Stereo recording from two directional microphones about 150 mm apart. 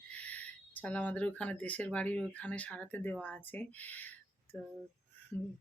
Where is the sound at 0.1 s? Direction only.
10° left (ahead or behind).